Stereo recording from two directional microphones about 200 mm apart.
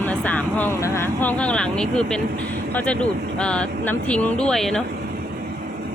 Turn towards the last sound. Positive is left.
turn(degrees=0)  # may be behind; listen again after turning